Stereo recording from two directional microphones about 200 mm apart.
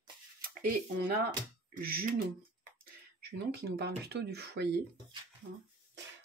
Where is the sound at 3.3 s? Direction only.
55° right (ahead or behind).